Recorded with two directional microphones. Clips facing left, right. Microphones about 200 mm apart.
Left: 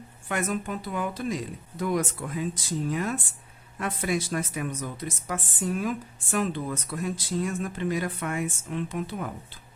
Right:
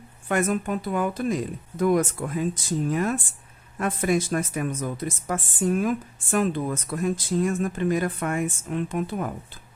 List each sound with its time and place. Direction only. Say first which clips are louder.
0.3 s speech: right 5 dB; 50° right (ahead or behind)